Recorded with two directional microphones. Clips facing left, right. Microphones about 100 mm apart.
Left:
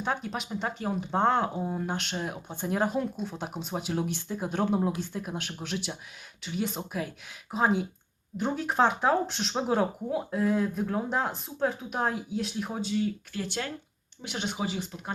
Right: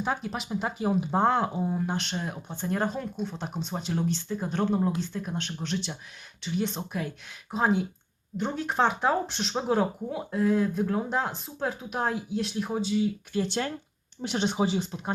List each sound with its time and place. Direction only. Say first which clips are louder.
0.0 s speech: right 1 dB; centre (ahead or behind)
13.3 s speech: right 5 dB; 25° right (ahead or behind)